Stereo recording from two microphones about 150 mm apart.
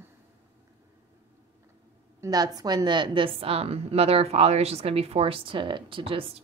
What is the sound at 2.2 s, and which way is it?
A woman's voice, 25° right (ahead or behind).